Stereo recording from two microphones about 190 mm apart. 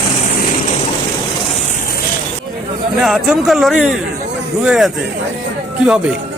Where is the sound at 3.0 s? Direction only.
Centre (ahead or behind).